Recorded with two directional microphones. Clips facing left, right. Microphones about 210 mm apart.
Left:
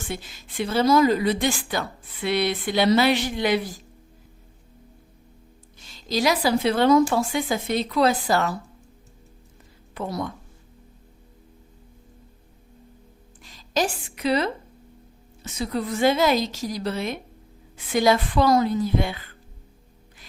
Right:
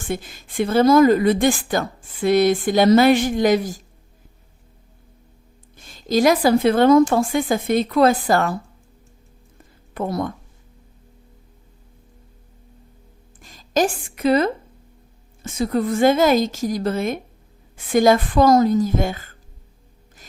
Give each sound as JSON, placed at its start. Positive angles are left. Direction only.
{"t": 0.0, "sound": "a woman's voice", "side_deg": -50}
{"t": 5.7, "sound": "a woman's voice", "side_deg": -50}
{"t": 9.9, "sound": "speech", "side_deg": -55}
{"t": 13.4, "sound": "a woman's voice", "side_deg": -50}